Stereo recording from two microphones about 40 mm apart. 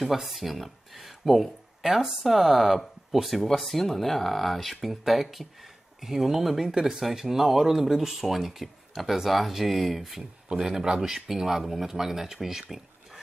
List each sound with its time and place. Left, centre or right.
0.0 s speech: centre
10.6 s speech: centre